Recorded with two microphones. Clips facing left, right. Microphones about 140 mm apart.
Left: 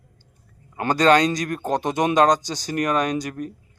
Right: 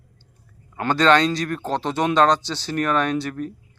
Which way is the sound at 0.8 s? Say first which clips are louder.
Even; 40° left (ahead or behind).